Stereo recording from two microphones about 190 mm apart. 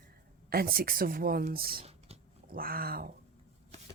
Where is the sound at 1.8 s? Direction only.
30° right (ahead or behind).